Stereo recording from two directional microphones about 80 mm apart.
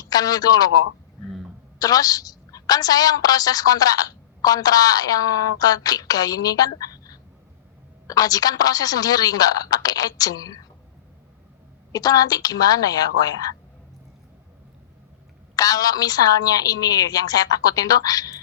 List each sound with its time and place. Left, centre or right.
0.0 s a man's voice: left
11.9 s a woman's voice: left
15.5 s a woman's voice: left